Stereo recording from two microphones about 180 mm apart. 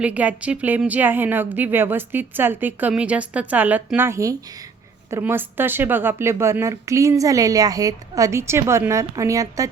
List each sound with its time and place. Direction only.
0.0 s speech: 10° right (ahead or behind)